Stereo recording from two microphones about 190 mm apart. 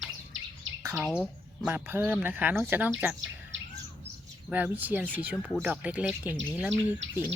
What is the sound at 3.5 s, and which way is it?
Bird, 85° right.